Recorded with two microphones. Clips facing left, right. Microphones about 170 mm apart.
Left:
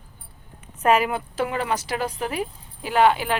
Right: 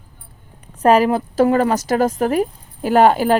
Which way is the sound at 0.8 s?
35° right (ahead or behind).